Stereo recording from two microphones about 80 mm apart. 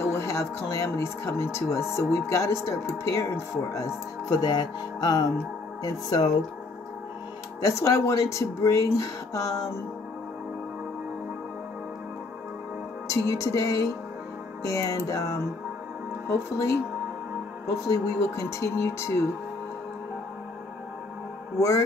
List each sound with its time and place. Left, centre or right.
0.1 s speech: left
4.4 s music: left
7.6 s speech: left
13.1 s music: left
16.3 s speech: left
17.8 s speech: left
21.5 s speech: left